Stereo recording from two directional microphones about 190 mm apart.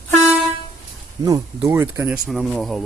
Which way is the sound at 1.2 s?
15° right (ahead or behind).